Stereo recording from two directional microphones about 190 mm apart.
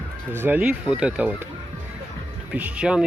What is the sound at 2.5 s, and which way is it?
Speech, 5° right (ahead or behind).